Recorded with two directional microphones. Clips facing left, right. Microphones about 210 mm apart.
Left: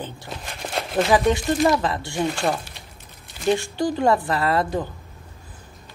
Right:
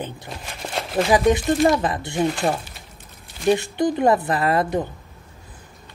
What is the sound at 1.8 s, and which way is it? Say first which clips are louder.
Speech: right 1 dB; 20° right (ahead or behind).